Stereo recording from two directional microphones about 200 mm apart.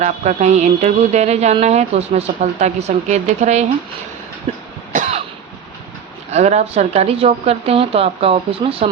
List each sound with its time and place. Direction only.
0.0 s speech: 35° right (ahead or behind)
6.3 s a woman's voice: 35° right (ahead or behind)